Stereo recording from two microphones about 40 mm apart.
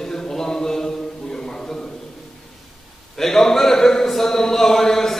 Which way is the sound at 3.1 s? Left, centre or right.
Centre.